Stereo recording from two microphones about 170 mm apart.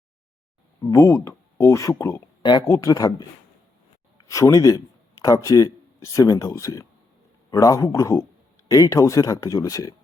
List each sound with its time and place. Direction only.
0.8 s speech: 20° left (ahead or behind)
4.3 s speech: 20° left (ahead or behind)